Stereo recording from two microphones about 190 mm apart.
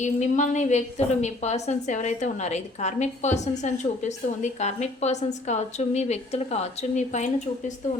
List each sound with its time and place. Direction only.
0.0 s a woman's voice: 40° left (ahead or behind)